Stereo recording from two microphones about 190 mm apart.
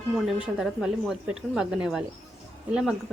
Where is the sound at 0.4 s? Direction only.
5° right (ahead or behind).